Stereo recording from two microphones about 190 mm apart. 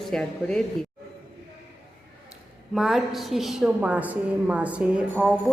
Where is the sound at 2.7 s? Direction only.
Centre (ahead or behind).